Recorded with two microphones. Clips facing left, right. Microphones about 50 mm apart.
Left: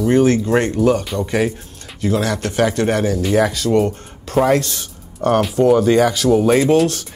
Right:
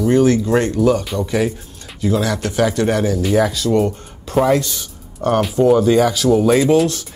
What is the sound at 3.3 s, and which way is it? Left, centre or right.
Speech, left.